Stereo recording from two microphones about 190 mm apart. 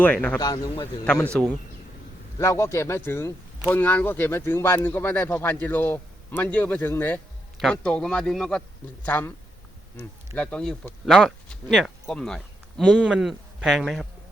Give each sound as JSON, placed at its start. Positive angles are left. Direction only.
{"t": 0.0, "sound": "speech", "side_deg": 5}
{"t": 0.3, "sound": "speech", "side_deg": 20}
{"t": 1.0, "sound": "speech", "side_deg": 5}
{"t": 10.3, "sound": "speech", "side_deg": 5}